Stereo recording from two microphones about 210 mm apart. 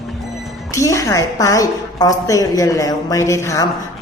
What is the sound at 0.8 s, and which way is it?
Speech, 15° left (ahead or behind).